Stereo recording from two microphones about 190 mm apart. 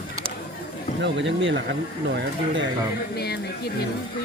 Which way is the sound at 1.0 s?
70° right (ahead or behind).